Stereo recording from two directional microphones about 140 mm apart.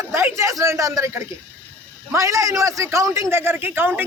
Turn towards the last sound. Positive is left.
turn(degrees=-15)  # may be behind; listen again after turning